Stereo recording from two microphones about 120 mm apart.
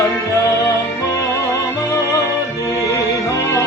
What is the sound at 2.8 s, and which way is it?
Music, 25° left (ahead or behind).